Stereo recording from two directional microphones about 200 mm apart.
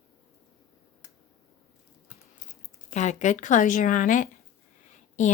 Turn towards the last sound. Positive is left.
turn(degrees=35)  # may be behind; listen again after turning